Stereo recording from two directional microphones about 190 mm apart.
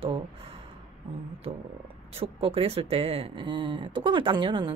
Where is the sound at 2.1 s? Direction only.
30° right (ahead or behind).